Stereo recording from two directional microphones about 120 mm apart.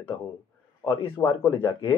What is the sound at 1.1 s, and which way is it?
Speech, 20° left (ahead or behind).